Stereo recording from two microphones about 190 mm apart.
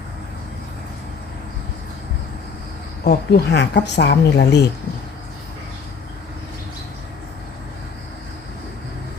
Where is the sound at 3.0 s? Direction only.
55° left (ahead or behind).